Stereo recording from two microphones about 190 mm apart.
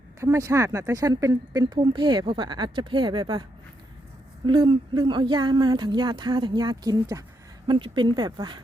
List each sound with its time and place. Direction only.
0.2 s speech: 15° right (ahead or behind)
4.4 s speech: 25° right (ahead or behind)